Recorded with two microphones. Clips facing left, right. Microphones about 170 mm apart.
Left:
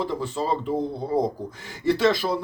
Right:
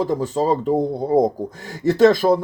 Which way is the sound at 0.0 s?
45° right (ahead or behind).